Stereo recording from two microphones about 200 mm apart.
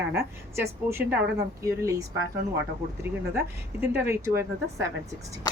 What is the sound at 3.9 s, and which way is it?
Speech, 15° right (ahead or behind).